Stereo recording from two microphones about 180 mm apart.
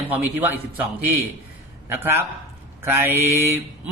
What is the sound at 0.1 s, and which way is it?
Speech, 10° right (ahead or behind).